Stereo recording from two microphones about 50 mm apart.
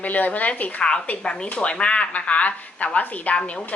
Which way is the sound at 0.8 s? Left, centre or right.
Centre.